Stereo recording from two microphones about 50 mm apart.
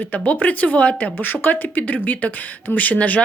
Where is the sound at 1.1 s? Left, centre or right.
Left.